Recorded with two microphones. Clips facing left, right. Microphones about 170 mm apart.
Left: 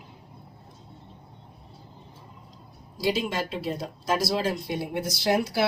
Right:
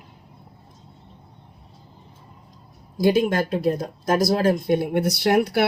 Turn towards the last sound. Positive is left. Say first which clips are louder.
# right 5 dB
turn(degrees=-60)  # may be behind; listen again after turning